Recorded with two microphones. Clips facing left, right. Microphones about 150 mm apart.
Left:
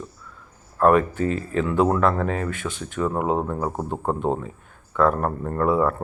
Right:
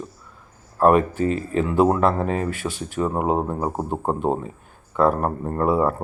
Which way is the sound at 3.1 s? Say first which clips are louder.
Right 1 dB; 15° right (ahead or behind).